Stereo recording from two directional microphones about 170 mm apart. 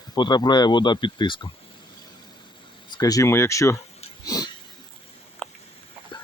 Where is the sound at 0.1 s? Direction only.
25° left (ahead or behind).